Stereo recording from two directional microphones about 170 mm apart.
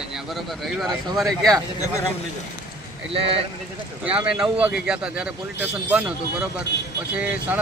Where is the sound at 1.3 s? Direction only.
Centre (ahead or behind).